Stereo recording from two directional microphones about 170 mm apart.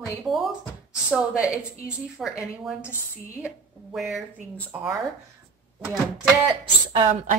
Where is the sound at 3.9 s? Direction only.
Centre (ahead or behind).